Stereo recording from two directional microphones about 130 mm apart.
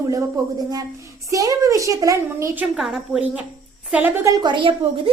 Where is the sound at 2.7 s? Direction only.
Centre (ahead or behind).